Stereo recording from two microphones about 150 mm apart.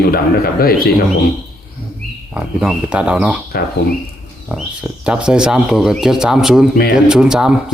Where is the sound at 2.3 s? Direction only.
5° right (ahead or behind).